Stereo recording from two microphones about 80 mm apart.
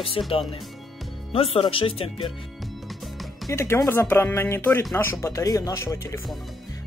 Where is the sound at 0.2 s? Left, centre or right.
Left.